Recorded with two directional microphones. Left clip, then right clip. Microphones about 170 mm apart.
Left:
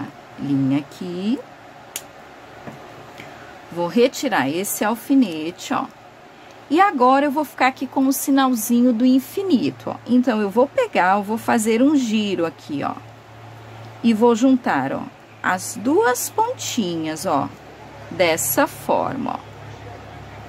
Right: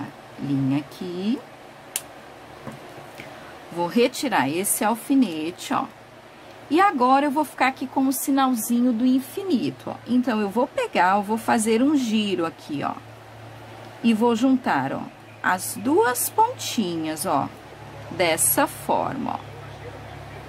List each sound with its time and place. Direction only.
0.7 s a woman's voice: 15° left (ahead or behind)
3.8 s a woman's voice: 10° left (ahead or behind)
14.0 s a woman's voice: 10° left (ahead or behind)